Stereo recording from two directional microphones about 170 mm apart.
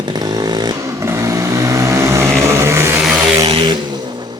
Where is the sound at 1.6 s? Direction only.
20° right (ahead or behind).